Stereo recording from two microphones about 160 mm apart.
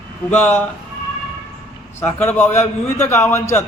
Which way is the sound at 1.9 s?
15° left (ahead or behind).